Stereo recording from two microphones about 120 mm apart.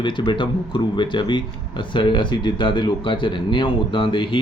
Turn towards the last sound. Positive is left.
turn(degrees=45)  # may be behind; listen again after turning